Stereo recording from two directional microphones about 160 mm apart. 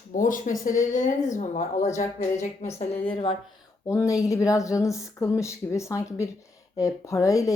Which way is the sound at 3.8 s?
20° left (ahead or behind).